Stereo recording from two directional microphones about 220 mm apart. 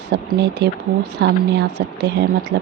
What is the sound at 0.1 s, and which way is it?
Speech, 50° right (ahead or behind).